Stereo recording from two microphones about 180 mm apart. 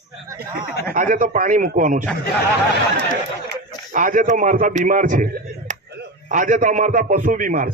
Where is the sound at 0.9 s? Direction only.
50° right (ahead or behind).